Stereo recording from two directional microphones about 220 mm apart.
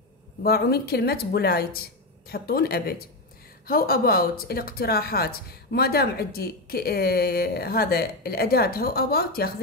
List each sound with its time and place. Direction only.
0.4 s speech: 45° left (ahead or behind)